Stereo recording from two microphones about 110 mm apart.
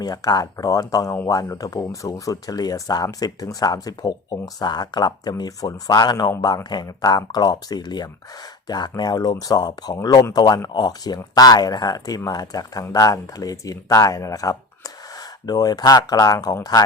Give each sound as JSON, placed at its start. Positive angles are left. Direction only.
{"t": 0.0, "sound": "speech", "side_deg": 35}